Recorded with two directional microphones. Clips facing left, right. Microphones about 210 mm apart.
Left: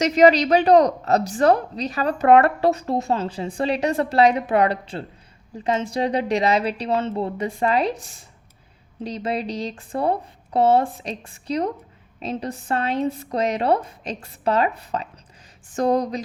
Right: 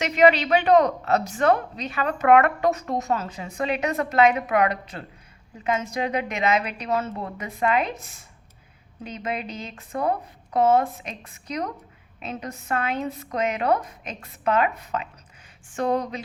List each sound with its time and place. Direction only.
0.0 s a woman's voice: 40° left (ahead or behind)
9.0 s a woman's voice: 35° left (ahead or behind)